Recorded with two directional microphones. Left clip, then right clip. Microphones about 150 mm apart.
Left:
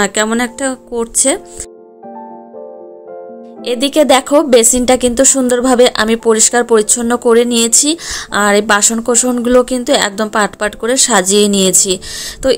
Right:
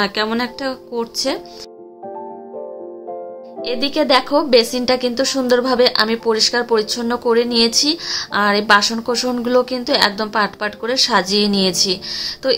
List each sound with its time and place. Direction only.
0.0 s speech: 45° left (ahead or behind)
3.6 s speech: 50° left (ahead or behind)